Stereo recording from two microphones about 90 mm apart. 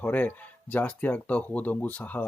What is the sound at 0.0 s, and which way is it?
Speech, 15° left (ahead or behind).